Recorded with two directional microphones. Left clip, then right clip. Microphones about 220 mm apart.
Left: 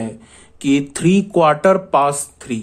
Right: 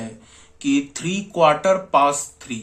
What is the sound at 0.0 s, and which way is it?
Speech, 40° left (ahead or behind).